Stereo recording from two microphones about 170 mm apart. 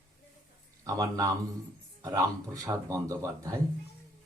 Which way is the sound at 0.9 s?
20° right (ahead or behind).